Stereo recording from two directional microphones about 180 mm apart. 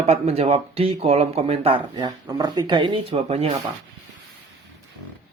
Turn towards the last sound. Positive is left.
turn(degrees=-35)  # may be behind; listen again after turning